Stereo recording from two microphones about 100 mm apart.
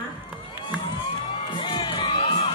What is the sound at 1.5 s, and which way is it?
Crowd, 50° left (ahead or behind).